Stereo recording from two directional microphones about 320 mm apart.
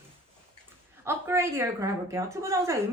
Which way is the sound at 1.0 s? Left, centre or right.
Centre.